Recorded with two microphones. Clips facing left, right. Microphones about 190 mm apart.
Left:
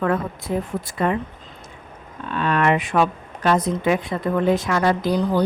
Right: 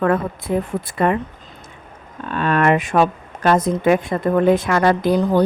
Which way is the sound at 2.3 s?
45° right (ahead or behind).